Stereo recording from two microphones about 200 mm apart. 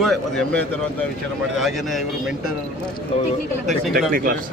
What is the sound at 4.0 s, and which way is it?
Speech, 45° right (ahead or behind).